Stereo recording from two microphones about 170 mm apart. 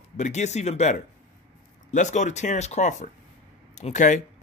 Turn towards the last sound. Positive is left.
turn(degrees=45)  # may be behind; listen again after turning